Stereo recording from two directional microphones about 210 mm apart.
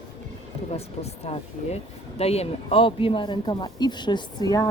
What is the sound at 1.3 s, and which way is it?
Speech, 30° left (ahead or behind).